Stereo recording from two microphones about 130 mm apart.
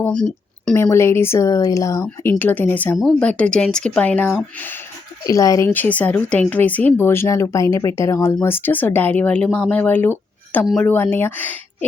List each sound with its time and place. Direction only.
0.0 s a sound: 5° left (ahead or behind)
0.8 s speech: 20° left (ahead or behind)
5.2 s speech: 25° left (ahead or behind)